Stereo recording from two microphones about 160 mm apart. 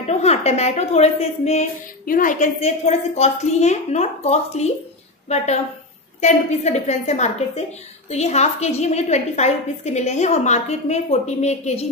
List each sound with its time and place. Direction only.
0.0 s a woman's voice: 40° left (ahead or behind)
2.0 s a woman's voice: 60° left (ahead or behind)
6.2 s a woman's voice: 45° left (ahead or behind)